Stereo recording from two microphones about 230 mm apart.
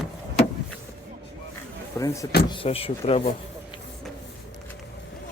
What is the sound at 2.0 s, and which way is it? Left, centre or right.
Speech, centre.